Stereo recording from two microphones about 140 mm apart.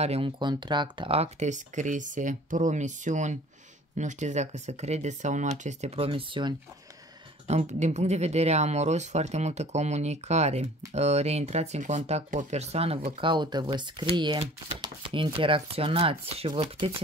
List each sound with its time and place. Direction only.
0.0 s speech: 50° right (ahead or behind)
0.4 s speech: 30° right (ahead or behind)
7.4 s speech: 55° right (ahead or behind)
13.2 s speech: 35° right (ahead or behind)